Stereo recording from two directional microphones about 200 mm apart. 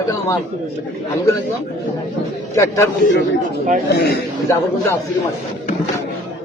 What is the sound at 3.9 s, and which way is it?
Speech, 55° left (ahead or behind).